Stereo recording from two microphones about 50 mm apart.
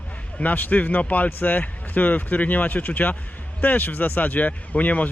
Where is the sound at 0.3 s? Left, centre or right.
Left.